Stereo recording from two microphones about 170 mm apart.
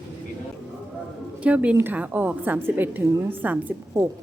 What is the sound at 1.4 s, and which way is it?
A woman's voice, 10° right (ahead or behind).